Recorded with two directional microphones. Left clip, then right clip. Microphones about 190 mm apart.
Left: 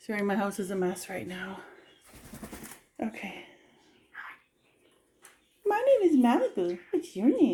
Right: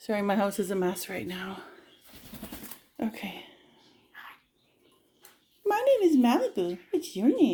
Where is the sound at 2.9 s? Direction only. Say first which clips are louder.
Right 1 dB; 15° right (ahead or behind).